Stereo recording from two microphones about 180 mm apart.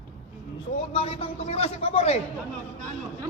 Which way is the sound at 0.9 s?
30° left (ahead or behind).